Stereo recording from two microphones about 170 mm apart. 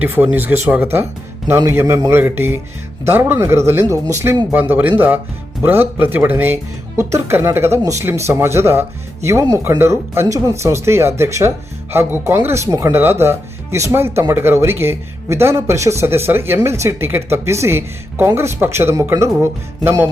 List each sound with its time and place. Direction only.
0.0 s speech: 10° right (ahead or behind)